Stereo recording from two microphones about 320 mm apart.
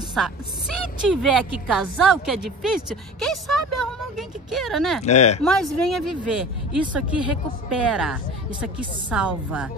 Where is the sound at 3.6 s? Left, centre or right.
Right.